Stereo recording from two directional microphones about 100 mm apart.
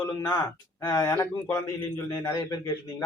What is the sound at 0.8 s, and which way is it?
Speech, 30° left (ahead or behind).